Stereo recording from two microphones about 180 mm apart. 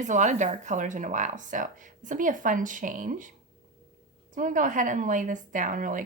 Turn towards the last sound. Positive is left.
turn(degrees=-45)  # may be behind; listen again after turning